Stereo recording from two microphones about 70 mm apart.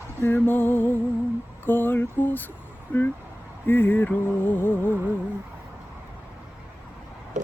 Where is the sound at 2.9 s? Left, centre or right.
Left.